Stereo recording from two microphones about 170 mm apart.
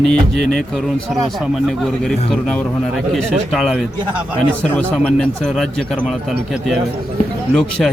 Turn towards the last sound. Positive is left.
turn(degrees=5)  # may be behind; listen again after turning